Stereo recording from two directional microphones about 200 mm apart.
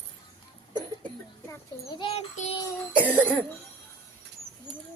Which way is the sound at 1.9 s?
30° left (ahead or behind).